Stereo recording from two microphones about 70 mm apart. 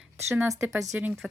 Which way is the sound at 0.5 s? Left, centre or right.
Right.